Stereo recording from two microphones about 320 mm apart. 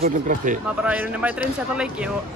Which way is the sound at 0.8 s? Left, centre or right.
Centre.